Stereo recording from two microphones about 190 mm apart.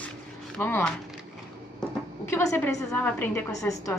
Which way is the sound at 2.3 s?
10° left (ahead or behind).